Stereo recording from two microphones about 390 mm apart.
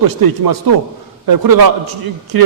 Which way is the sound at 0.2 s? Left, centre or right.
Right.